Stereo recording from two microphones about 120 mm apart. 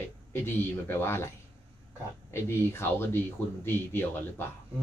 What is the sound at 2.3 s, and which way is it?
A man's voice, 20° left (ahead or behind).